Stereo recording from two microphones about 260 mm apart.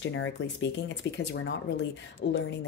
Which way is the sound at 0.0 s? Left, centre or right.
Left.